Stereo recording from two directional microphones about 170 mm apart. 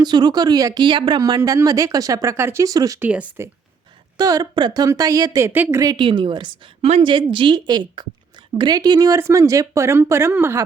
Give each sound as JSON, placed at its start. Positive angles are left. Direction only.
{"t": 0.0, "sound": "a woman's voice", "side_deg": -25}
{"t": 4.2, "sound": "a woman's voice", "side_deg": -20}